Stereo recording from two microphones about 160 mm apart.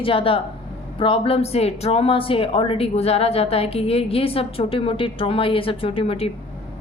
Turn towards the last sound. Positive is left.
turn(degrees=35)  # may be behind; listen again after turning